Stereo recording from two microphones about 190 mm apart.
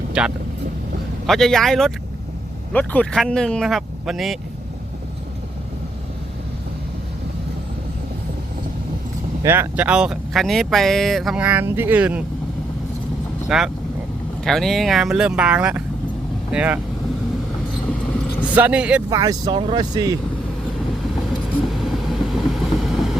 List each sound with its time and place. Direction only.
0.1 s speech: 5° right (ahead or behind)
9.4 s speech: 10° right (ahead or behind)
13.5 s speech: 5° right (ahead or behind)
18.5 s speech: 5° right (ahead or behind)
19.1 s speech: 20° right (ahead or behind)
21.7 s vehicle: centre (ahead or behind)